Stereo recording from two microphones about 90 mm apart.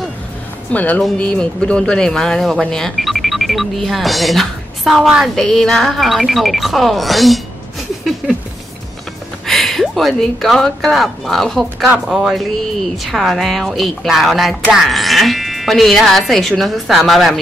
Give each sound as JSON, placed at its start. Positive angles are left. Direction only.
{"t": 0.7, "sound": "speech", "side_deg": 15}
{"t": 9.5, "sound": "speech", "side_deg": 0}